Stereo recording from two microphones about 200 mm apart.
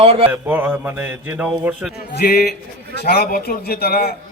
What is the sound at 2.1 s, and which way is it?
A man's voice, 50° left (ahead or behind).